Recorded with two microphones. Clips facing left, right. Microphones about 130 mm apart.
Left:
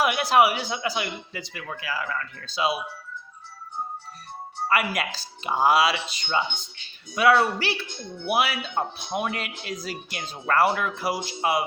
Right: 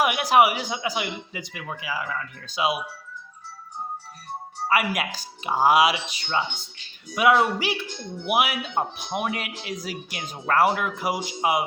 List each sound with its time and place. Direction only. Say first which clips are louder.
0.0 s speech: right 1 dB; 15° right (ahead or behind)
4.7 s speech: right 1 dB; 10° right (ahead or behind)